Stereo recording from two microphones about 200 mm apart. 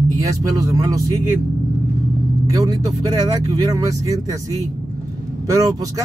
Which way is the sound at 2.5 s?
15° right (ahead or behind).